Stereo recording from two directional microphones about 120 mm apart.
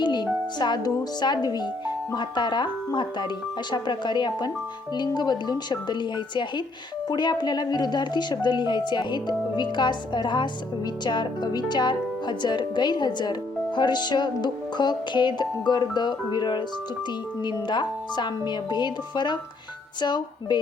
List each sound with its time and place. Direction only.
0.0 s music: 40° left (ahead or behind)
0.6 s speech: 35° left (ahead or behind)